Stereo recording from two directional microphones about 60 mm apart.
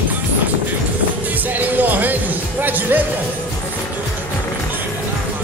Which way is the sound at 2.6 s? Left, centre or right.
Right.